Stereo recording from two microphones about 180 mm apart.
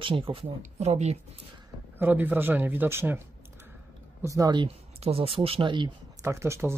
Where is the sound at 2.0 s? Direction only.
10° right (ahead or behind).